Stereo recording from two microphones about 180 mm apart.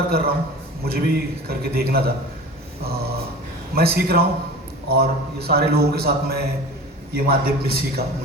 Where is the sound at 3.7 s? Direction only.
60° right (ahead or behind).